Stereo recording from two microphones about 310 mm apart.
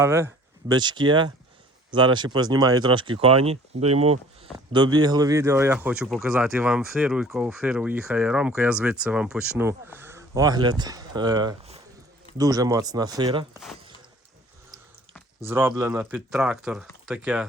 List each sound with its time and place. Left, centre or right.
0.0 s speech: centre
15.4 s speech: centre